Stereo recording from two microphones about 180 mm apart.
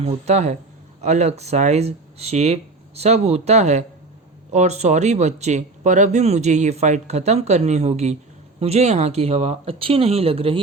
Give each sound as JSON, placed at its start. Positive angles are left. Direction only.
{"t": 0.0, "sound": "speech", "side_deg": -35}